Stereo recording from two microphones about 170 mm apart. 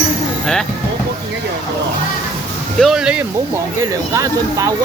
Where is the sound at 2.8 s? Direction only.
5° right (ahead or behind).